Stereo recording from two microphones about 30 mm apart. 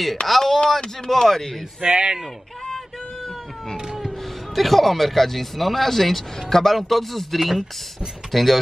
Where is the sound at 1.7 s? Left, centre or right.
Right.